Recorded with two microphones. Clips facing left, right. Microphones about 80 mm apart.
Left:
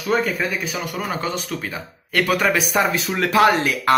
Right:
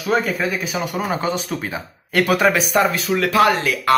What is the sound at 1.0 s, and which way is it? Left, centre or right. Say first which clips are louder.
Speech: right 3 dB; centre.